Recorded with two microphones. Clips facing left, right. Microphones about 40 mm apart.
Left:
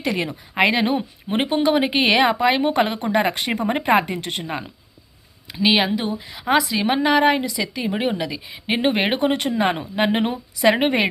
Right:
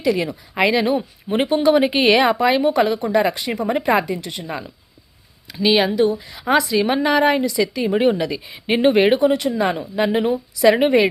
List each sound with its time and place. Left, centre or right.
0.0 s speech: left; by 2.6 s centre
2.6 s a woman's voice: left
3.6 s a woman's voice: left
4.4 s speech: left
5.5 s a woman's voice: centre
9.1 s a woman's voice: left